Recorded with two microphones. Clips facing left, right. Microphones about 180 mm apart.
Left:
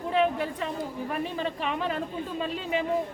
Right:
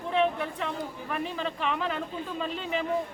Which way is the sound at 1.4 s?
40° left (ahead or behind).